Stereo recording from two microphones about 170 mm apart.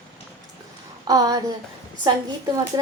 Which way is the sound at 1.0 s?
20° right (ahead or behind).